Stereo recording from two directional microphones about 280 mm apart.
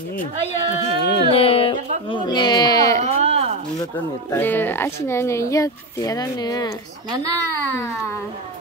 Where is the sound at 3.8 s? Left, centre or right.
Centre.